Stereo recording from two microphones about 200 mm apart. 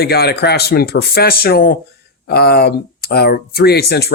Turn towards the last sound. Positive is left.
turn(degrees=55)  # may be behind; listen again after turning